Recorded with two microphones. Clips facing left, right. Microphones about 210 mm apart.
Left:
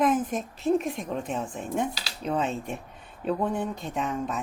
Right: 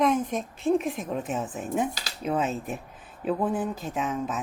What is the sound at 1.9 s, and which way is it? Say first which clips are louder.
Speech: even; 45° right (ahead or behind).